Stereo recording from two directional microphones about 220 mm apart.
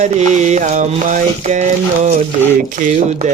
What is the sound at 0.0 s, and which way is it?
Mantra, 30° right (ahead or behind).